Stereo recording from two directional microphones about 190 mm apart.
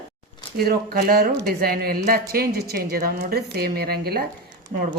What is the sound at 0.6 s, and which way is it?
A woman's voice, 55° right (ahead or behind).